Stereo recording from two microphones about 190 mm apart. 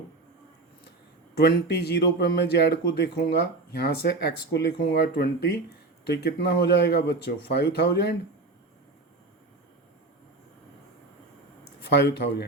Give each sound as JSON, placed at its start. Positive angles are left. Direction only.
{"t": 1.4, "sound": "speech", "side_deg": 60}
{"t": 11.9, "sound": "speech", "side_deg": 60}